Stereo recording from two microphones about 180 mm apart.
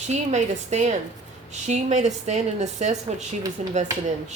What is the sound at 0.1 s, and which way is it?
A woman's voice, 40° right (ahead or behind).